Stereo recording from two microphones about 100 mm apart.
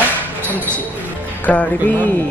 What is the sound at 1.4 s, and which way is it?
Speech, 15° left (ahead or behind).